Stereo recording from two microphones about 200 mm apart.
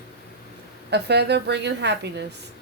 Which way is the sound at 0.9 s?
55° right (ahead or behind).